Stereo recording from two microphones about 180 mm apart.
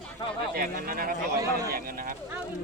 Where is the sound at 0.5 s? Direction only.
50° right (ahead or behind).